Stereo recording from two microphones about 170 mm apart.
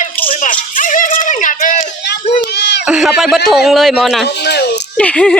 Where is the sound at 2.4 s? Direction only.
75° left (ahead or behind).